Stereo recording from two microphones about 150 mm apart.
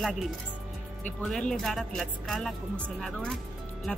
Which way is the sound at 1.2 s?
Centre (ahead or behind).